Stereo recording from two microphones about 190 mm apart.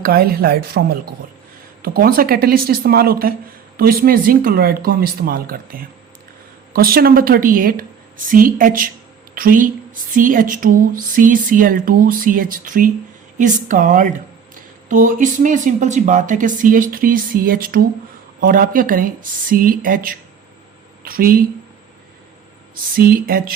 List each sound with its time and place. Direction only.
0.0 s speech: 50° right (ahead or behind)
22.7 s speech: 50° right (ahead or behind)